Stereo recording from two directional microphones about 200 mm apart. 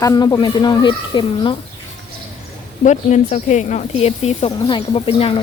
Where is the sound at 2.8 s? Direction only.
35° left (ahead or behind).